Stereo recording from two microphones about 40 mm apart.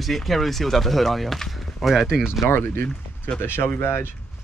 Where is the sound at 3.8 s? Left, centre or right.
Left.